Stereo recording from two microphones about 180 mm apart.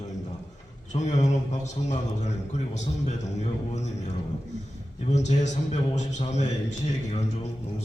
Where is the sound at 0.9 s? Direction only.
40° left (ahead or behind).